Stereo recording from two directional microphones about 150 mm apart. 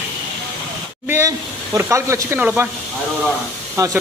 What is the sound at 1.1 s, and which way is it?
Speech, 20° right (ahead or behind).